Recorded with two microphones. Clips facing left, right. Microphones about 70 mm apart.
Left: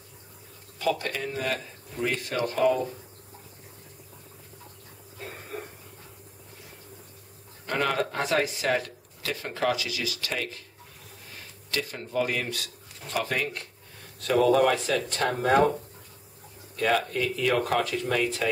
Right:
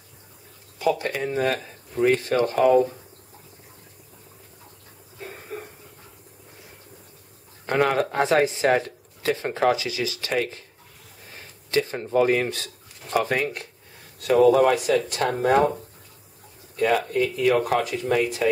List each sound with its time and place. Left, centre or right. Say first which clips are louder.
0.7 s speech: right 4 dB; centre; by 2.6 s right
7.9 s speech: right 5 dB; right
11.7 s speech: right 8 dB; right; by 15.5 s centre
16.7 s speech: right 4 dB; centre